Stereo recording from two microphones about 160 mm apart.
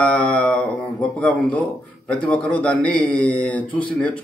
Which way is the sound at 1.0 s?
10° left (ahead or behind).